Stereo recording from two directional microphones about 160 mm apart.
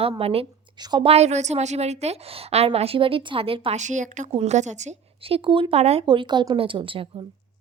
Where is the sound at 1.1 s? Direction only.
45° right (ahead or behind).